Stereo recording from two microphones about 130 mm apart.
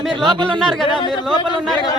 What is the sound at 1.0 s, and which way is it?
Speech, 35° left (ahead or behind).